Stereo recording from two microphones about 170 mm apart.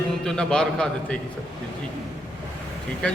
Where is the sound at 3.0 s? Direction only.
5° left (ahead or behind).